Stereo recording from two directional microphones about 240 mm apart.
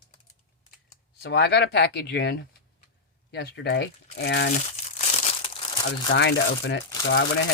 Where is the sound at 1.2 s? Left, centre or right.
Left.